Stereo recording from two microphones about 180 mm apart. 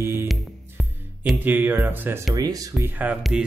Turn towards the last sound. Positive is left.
turn(degrees=-5)  # may be behind; listen again after turning